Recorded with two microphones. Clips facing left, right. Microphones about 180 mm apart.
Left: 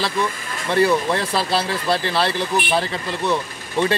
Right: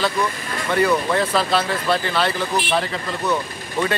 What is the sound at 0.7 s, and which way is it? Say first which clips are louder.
Speech: left 1 dB; 30° left (ahead or behind).